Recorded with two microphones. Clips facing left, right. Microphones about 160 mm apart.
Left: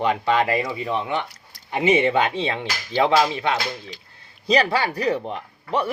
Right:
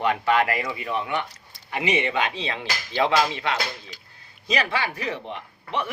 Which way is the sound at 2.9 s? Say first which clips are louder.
Left 3 dB; 20° left (ahead or behind).